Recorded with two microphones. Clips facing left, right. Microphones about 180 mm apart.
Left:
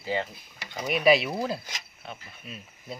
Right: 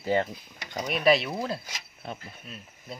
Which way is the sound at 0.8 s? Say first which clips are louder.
Left 1 dB; centre (ahead or behind).